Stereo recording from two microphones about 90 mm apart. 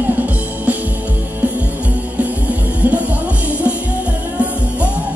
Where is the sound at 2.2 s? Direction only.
15° right (ahead or behind).